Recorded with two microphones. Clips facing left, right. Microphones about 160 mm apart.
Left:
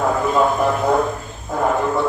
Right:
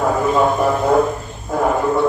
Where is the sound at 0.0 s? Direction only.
5° right (ahead or behind).